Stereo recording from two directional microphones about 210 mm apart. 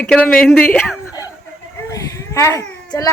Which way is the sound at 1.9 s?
15° left (ahead or behind).